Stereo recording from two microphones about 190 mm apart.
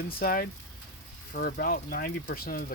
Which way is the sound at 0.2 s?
50° left (ahead or behind).